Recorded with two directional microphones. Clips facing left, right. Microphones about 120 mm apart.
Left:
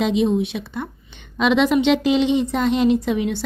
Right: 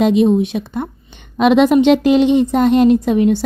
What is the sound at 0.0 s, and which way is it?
A woman's voice, 50° right (ahead or behind).